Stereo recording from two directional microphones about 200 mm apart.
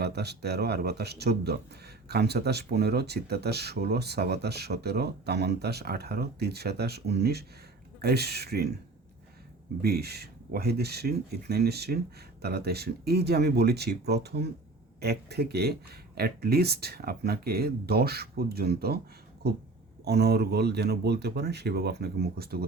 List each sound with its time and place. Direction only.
0.0 s speech: 55° right (ahead or behind)
9.8 s speech: 55° right (ahead or behind)